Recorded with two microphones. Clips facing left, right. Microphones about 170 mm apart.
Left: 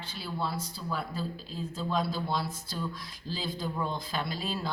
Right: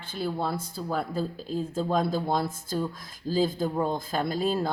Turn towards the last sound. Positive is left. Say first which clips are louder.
# right 8 dB
turn(degrees=-50)  # may be behind; listen again after turning